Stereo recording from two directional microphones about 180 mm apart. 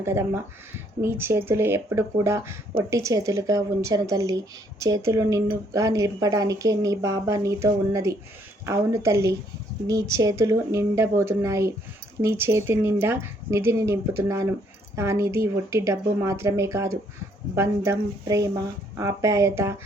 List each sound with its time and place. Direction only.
0.0 s speech: 15° right (ahead or behind)